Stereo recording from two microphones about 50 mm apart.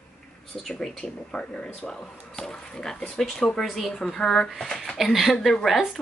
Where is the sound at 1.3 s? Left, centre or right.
Centre.